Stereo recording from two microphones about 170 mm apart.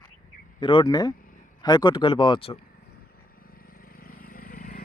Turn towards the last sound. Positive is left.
turn(degrees=55)  # may be behind; listen again after turning